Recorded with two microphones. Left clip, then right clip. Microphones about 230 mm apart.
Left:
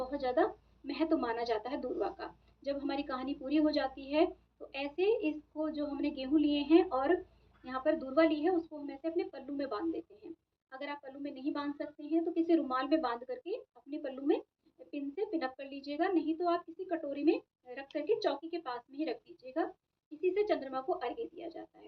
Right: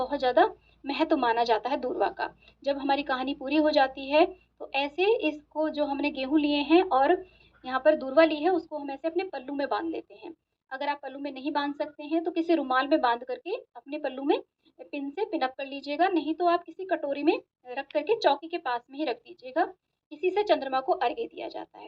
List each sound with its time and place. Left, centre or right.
0.0 s a woman's voice: right